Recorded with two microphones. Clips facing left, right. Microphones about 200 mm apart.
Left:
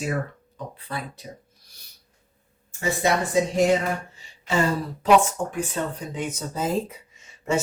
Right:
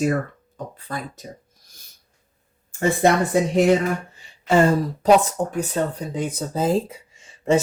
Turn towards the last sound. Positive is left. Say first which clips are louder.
# right 6 dB
turn(degrees=-30)  # may be behind; listen again after turning